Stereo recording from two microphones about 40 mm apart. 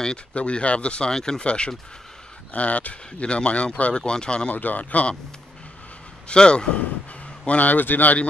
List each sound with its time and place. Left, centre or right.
0.3 s speech: left
1.1 s speech: centre
1.4 s speech: left
4.5 s a man's voice: left
6.2 s speech: left
7.4 s a man's voice: left